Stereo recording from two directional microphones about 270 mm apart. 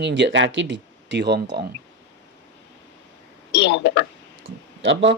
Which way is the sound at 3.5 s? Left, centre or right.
Left.